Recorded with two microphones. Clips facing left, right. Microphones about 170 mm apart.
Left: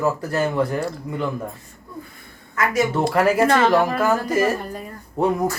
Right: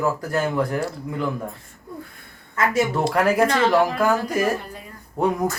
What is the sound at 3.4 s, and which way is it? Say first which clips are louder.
Speech: left 2 dB; 55° left (ahead or behind).